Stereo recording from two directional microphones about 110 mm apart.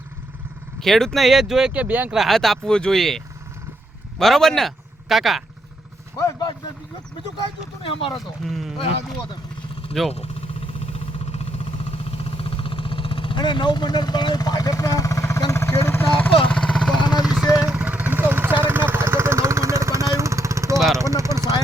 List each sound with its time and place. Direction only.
0.8 s speech: 5° left (ahead or behind); by 2.1 s 15° right (ahead or behind)
2.1 s speech: centre (ahead or behind)
4.2 s speech: 5° left (ahead or behind)
7.8 s speech: 55° left (ahead or behind)
8.2 s speech: centre (ahead or behind)
10.1 s vehicle: 70° left (ahead or behind); by 16.3 s 20° left (ahead or behind)
16.6 s vehicle: 5° left (ahead or behind); by 20.7 s 25° right (ahead or behind)
20.7 s vehicle: centre (ahead or behind)
21.0 s vehicle: 25° right (ahead or behind)